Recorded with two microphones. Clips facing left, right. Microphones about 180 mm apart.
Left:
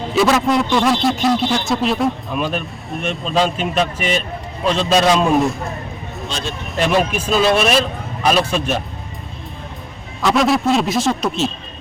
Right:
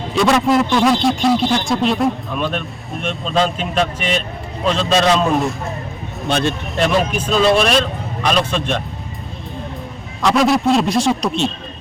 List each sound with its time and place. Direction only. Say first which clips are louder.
0.1 s a man's voice: right 1 dB; centre (ahead or behind)
6.2 s speech: right 9 dB; 60° right (ahead or behind)
6.7 s a man's voice: left 1 dB; centre (ahead or behind)
10.2 s a man's voice: right 1 dB; centre (ahead or behind)